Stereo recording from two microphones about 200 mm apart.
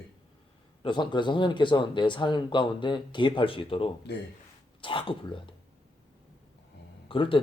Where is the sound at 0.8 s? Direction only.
25° left (ahead or behind).